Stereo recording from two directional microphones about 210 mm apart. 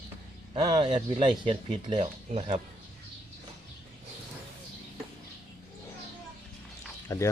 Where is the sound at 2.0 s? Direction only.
35° right (ahead or behind).